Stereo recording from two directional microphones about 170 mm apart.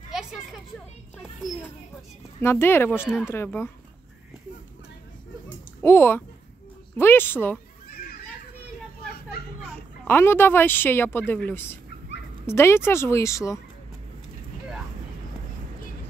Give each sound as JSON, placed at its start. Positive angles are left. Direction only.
{"t": 2.4, "sound": "speech", "side_deg": 15}
{"t": 5.8, "sound": "speech", "side_deg": 15}
{"t": 9.1, "sound": "a sound", "side_deg": 65}
{"t": 10.0, "sound": "speech", "side_deg": 15}